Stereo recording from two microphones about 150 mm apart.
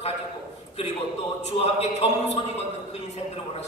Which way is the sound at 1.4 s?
45° left (ahead or behind).